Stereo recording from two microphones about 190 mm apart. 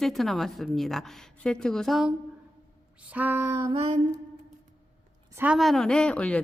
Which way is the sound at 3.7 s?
30° right (ahead or behind).